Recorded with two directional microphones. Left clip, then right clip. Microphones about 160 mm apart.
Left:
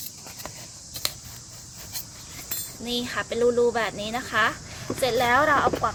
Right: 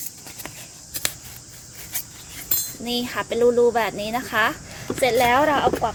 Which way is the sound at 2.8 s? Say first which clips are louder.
Right 2 dB; 30° right (ahead or behind).